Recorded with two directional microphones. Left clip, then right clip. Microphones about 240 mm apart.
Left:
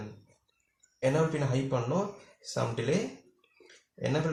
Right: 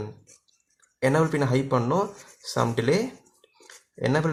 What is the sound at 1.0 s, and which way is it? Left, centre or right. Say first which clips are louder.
Speech: right 6 dB; right.